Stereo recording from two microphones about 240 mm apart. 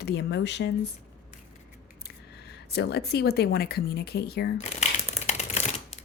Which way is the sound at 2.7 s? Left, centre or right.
Left.